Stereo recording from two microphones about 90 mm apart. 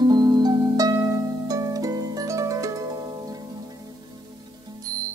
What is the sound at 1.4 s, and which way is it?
Harp, 40° right (ahead or behind).